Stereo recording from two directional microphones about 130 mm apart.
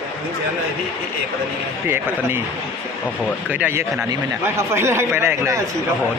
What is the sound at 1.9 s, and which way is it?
Speech, 20° right (ahead or behind).